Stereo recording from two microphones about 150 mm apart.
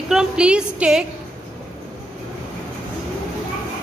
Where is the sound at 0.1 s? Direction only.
5° right (ahead or behind).